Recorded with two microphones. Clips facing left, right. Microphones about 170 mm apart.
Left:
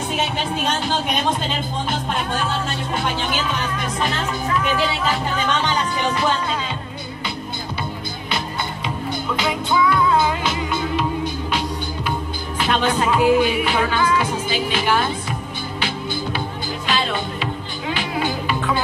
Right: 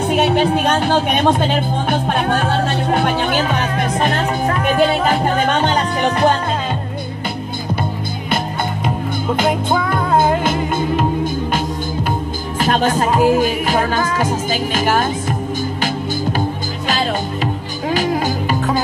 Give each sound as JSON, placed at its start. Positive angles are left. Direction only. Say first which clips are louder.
{"t": 0.0, "sound": "speech", "louder": "right 9 dB", "side_deg": -60}
{"t": 9.4, "sound": "music", "louder": "right 2 dB", "side_deg": -50}
{"t": 12.5, "sound": "music", "louder": "right 4 dB", "side_deg": -40}